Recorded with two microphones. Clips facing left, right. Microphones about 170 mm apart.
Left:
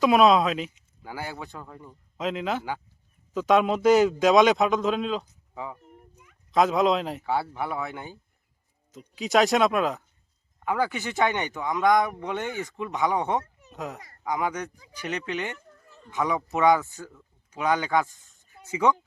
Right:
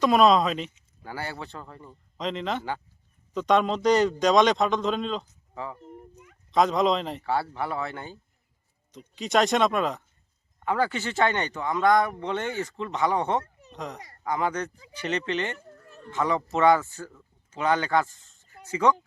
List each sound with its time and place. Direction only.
0.0 s a man's voice: 5° left (ahead or behind)
5.8 s a sound: 30° right (ahead or behind)
6.5 s a man's voice: 5° left (ahead or behind)
7.3 s speech: 15° left (ahead or behind)
8.9 s a man's voice: centre (ahead or behind)
15.8 s a sound: 70° right (ahead or behind)
16.2 s a man's voice: 5° left (ahead or behind)
16.6 s speech: 15° left (ahead or behind)